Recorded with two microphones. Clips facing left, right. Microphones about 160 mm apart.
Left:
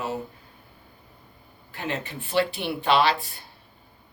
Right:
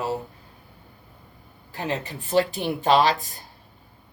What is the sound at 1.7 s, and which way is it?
Speech, 35° right (ahead or behind).